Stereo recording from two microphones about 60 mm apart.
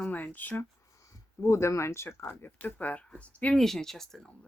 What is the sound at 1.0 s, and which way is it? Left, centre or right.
Speech, left.